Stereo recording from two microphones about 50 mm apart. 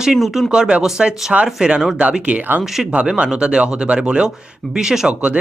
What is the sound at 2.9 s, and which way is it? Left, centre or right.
Speech, right.